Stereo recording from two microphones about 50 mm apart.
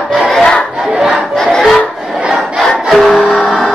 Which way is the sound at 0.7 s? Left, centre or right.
Centre.